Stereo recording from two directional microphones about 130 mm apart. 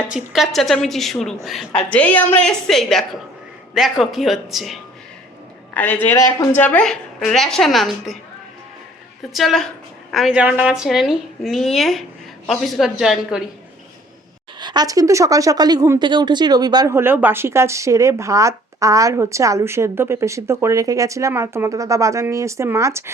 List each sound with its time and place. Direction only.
0.1 s a woman's voice: centre (ahead or behind)
1.9 s a woman's voice: 10° left (ahead or behind)
5.7 s a woman's voice: 15° left (ahead or behind)
6.1 s speech: 25° left (ahead or behind)
6.6 s a woman's voice: 10° left (ahead or behind)
9.3 s a woman's voice: centre (ahead or behind)
14.6 s speech: 35° right (ahead or behind)
16.9 s speech: 15° right (ahead or behind)